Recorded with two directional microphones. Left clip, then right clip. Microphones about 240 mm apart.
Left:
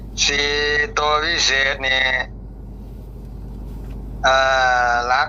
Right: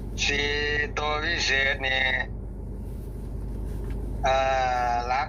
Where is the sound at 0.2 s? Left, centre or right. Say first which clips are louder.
Left 7 dB; centre.